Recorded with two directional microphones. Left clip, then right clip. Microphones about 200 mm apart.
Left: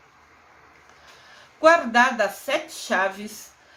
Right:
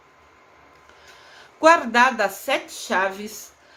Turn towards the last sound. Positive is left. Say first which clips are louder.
# right 1 dB
turn(degrees=-15)  # may be behind; listen again after turning